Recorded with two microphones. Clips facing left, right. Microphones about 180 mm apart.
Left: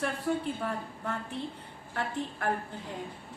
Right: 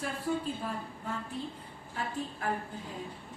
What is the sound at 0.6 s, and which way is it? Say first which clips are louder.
Speech: left 3 dB; 70° left (ahead or behind).